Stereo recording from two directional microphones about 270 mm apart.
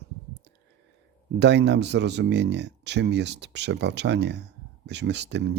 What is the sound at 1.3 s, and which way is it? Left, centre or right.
Speech, right.